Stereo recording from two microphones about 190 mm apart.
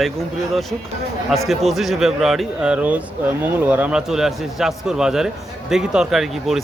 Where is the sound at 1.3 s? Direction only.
Centre (ahead or behind).